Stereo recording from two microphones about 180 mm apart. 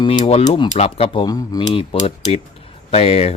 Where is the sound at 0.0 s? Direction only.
25° left (ahead or behind).